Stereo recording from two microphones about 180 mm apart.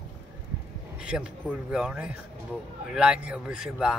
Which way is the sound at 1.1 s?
5° right (ahead or behind).